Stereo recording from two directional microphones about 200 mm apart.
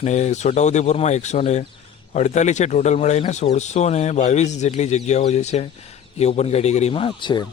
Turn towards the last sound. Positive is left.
turn(degrees=25)  # may be behind; listen again after turning